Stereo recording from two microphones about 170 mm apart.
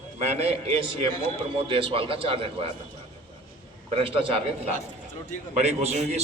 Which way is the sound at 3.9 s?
30° right (ahead or behind).